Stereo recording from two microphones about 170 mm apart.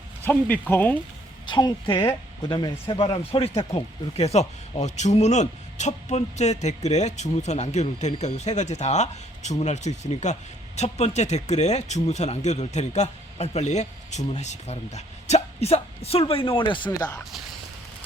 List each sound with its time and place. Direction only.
0.3 s speech: 10° left (ahead or behind)
1.5 s a woman's voice: 25° left (ahead or behind)